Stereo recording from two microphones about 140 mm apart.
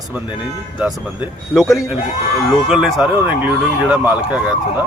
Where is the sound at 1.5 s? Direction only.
Centre (ahead or behind).